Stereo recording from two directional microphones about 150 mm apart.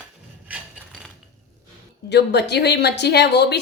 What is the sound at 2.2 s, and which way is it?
Speech, 90° left.